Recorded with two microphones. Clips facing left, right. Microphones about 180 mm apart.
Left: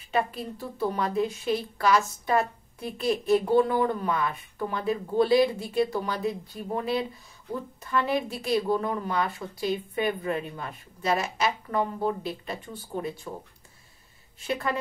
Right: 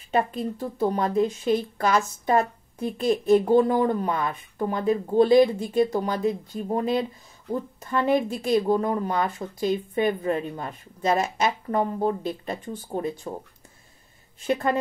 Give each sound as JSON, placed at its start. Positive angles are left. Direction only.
{"t": 0.8, "sound": "speech", "side_deg": -40}
{"t": 14.4, "sound": "speech", "side_deg": -40}